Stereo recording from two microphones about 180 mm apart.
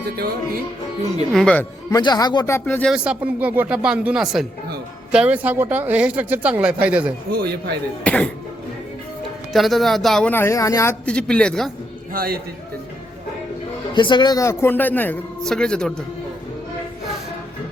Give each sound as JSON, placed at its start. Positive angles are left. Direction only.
{"t": 1.3, "sound": "speech", "side_deg": 5}
{"t": 1.9, "sound": "speech", "side_deg": 20}
{"t": 2.6, "sound": "speech", "side_deg": 10}
{"t": 2.9, "sound": "speech", "side_deg": -5}
{"t": 7.3, "sound": "speech", "side_deg": -60}
{"t": 8.0, "sound": "speech", "side_deg": 5}
{"t": 9.5, "sound": "speech", "side_deg": 0}
{"t": 12.1, "sound": "speech", "side_deg": -55}
{"t": 13.9, "sound": "speech", "side_deg": 25}